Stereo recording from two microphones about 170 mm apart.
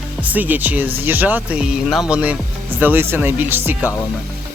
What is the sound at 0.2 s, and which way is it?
Speech, 10° right (ahead or behind).